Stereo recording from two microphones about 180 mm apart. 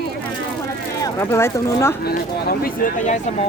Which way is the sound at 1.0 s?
15° left (ahead or behind).